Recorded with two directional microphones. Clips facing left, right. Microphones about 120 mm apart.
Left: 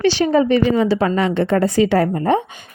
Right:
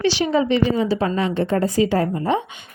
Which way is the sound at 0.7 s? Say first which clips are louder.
Left 4 dB; 75° left (ahead or behind).